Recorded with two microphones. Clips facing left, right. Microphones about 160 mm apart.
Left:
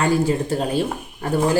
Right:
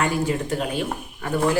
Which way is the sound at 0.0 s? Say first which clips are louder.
Left 4 dB; 35° left (ahead or behind).